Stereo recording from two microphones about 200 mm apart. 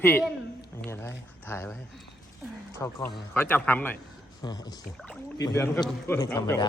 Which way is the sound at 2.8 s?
10° left (ahead or behind).